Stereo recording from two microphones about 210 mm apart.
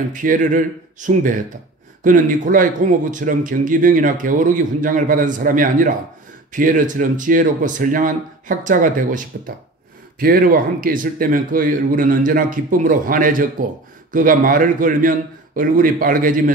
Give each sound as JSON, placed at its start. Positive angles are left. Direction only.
{"t": 0.1, "sound": "speech", "side_deg": -40}